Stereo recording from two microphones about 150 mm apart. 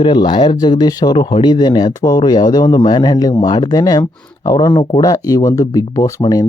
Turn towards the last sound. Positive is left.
turn(degrees=25)  # may be behind; listen again after turning